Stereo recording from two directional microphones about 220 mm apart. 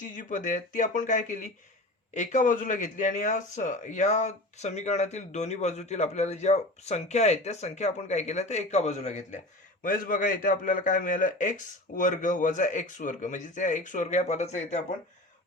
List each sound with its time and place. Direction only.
0.2 s speech: 35° left (ahead or behind)